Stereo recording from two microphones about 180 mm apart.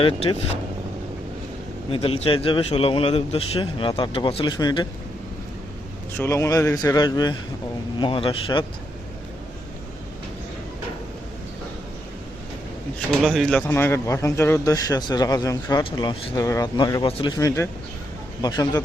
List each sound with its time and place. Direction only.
0.0 s speech: 30° left (ahead or behind)
1.9 s speech: 30° left (ahead or behind)
6.1 s a man's voice: 15° left (ahead or behind)
13.2 s speech: centre (ahead or behind)
13.6 s speech: 10° left (ahead or behind); by 17.3 s 30° left (ahead or behind)
17.3 s a man's voice: 15° left (ahead or behind)